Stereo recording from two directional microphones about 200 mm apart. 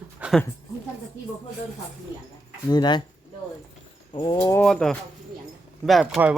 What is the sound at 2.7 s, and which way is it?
Speech, 20° left (ahead or behind).